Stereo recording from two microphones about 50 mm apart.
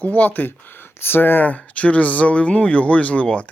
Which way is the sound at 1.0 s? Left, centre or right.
Left.